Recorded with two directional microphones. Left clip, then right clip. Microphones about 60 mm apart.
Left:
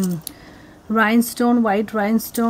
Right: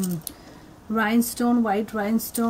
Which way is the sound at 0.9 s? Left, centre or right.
Left.